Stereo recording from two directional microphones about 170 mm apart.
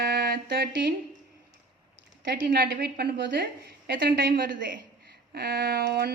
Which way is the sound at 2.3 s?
65° right (ahead or behind).